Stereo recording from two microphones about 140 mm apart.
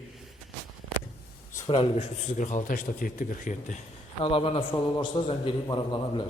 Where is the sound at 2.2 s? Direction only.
60° left (ahead or behind).